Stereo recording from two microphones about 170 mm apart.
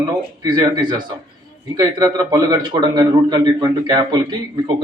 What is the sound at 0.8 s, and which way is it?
A man's voice, 25° right (ahead or behind).